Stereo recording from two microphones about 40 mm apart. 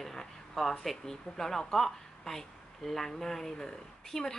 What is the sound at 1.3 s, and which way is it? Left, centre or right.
A woman's voice, centre.